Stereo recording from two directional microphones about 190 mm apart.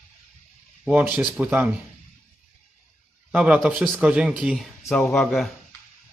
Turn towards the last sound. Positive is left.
turn(degrees=0)  # may be behind; listen again after turning